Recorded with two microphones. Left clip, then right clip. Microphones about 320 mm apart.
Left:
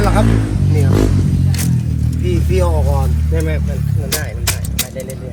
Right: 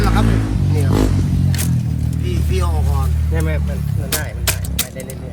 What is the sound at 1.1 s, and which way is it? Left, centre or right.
Music, right.